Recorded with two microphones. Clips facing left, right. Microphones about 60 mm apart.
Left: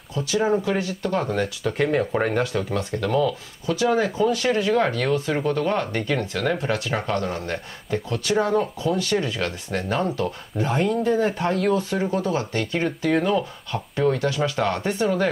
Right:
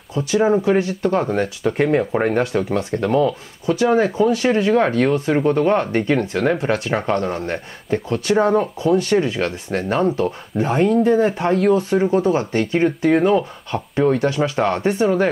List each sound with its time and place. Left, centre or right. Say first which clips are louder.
0.1 s speech: right 5 dB; right